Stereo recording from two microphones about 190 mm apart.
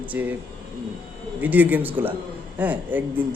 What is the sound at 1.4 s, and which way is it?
Speech, 10° right (ahead or behind).